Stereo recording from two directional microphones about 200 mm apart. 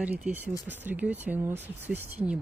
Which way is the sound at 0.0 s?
10° right (ahead or behind).